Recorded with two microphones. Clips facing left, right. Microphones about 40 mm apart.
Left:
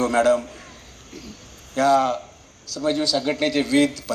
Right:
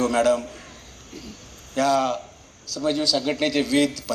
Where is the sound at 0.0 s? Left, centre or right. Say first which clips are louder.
Left 2 dB; left.